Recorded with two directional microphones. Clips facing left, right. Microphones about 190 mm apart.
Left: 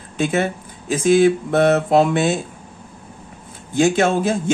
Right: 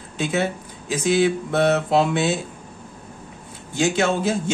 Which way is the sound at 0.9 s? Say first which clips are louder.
Left 5 dB; 50° left (ahead or behind).